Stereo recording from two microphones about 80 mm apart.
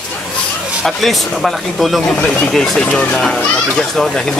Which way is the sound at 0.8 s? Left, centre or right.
Centre.